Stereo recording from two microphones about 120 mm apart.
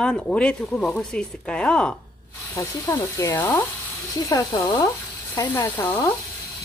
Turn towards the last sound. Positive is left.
turn(degrees=20)  # may be behind; listen again after turning